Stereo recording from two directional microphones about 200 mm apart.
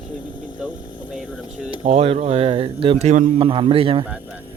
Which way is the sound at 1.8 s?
35° right (ahead or behind).